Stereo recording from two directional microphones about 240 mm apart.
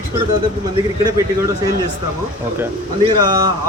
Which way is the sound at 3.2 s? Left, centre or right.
Centre.